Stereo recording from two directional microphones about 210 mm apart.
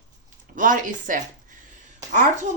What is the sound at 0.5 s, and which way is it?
Speech, 40° right (ahead or behind).